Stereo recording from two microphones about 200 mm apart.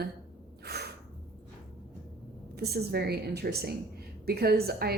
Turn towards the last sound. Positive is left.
turn(degrees=-50)  # may be behind; listen again after turning